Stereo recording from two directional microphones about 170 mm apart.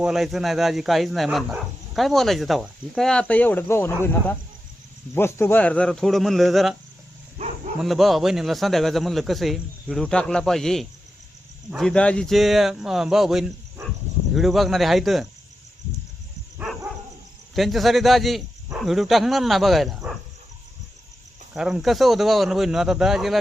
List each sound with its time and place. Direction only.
0.0 s a man's voice: centre (ahead or behind)
7.4 s dog: 40° right (ahead or behind)
7.8 s a man's voice: centre (ahead or behind)
17.5 s a man's voice: centre (ahead or behind)
21.5 s a man's voice: centre (ahead or behind)